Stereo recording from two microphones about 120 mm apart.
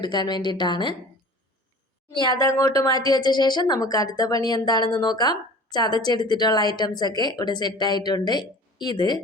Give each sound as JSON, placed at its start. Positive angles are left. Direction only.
{"t": 0.0, "sound": "a woman's voice", "side_deg": 40}
{"t": 2.1, "sound": "a woman's voice", "side_deg": 40}
{"t": 2.4, "sound": "a woman's voice", "side_deg": 25}